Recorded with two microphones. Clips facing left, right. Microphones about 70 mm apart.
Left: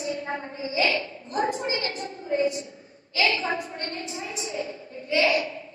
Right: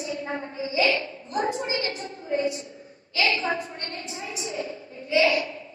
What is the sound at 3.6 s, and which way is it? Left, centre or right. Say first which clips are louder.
A woman's voice: left 2 dB; left.